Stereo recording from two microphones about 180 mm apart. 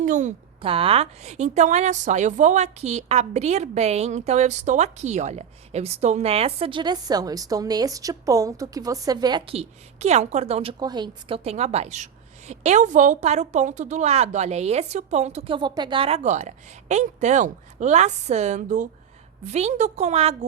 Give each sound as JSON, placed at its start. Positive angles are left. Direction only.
{"t": 0.0, "sound": "a woman's voice", "side_deg": -45}
{"t": 0.6, "sound": "a woman's voice", "side_deg": -30}